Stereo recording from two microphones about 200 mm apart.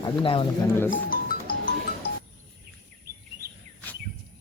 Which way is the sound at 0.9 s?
45° left (ahead or behind).